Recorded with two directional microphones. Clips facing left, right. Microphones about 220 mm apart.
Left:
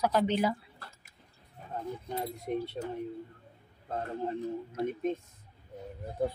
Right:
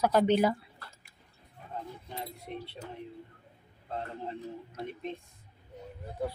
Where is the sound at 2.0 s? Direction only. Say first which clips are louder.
Left 6 dB; 45° left (ahead or behind).